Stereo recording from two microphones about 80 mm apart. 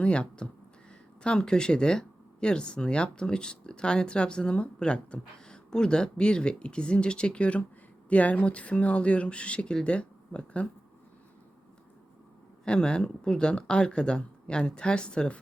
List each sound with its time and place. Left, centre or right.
0.0 s speech: centre
12.6 s speech: centre